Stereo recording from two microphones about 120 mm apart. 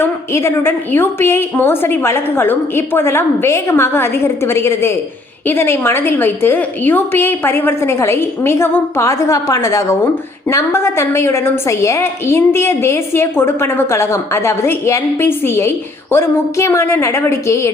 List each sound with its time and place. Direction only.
0.0 s a woman's voice: 20° left (ahead or behind)